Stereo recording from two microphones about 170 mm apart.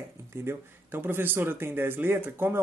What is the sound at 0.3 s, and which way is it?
Speech, 15° right (ahead or behind).